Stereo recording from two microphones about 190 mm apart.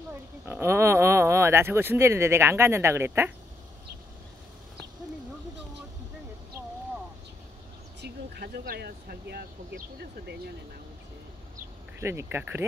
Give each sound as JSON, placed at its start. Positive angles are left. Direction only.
{"t": 0.5, "sound": "speech", "side_deg": -15}
{"t": 8.0, "sound": "speech", "side_deg": -55}
{"t": 12.0, "sound": "speech", "side_deg": -15}